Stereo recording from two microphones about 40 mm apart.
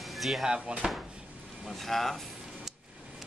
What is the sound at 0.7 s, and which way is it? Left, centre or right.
Speech, right.